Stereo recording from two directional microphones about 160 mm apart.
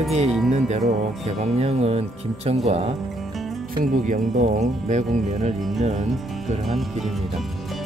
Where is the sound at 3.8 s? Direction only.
50° right (ahead or behind).